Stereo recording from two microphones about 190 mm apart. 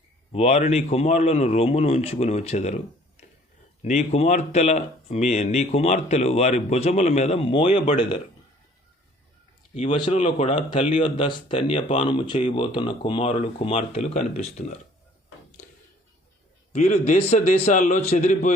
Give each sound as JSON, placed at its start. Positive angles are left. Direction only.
{"t": 0.3, "sound": "speech", "side_deg": 35}
{"t": 3.8, "sound": "speech", "side_deg": 35}
{"t": 9.9, "sound": "speech", "side_deg": 30}
{"t": 16.7, "sound": "speech", "side_deg": 40}